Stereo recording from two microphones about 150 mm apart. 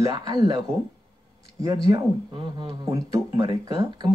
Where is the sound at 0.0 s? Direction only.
25° right (ahead or behind).